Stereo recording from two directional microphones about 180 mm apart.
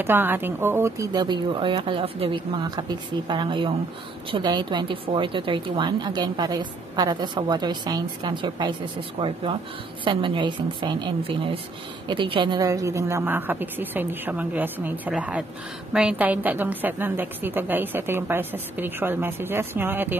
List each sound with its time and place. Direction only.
0.0 s a woman's voice: 10° right (ahead or behind)